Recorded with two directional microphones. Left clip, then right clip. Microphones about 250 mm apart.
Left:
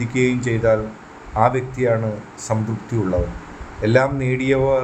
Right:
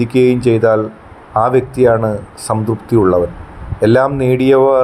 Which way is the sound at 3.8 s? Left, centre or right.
Right.